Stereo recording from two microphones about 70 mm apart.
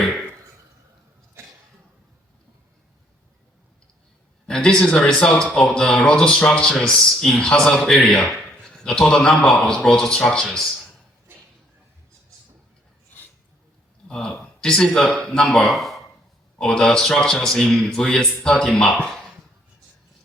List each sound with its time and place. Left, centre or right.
4.4 s a man's voice: centre
13.1 s a sound: left
14.1 s a man's voice: centre